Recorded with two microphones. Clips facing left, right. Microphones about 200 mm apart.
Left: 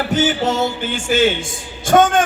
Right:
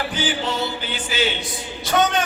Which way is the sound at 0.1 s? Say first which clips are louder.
Left 7 dB; 45° left (ahead or behind).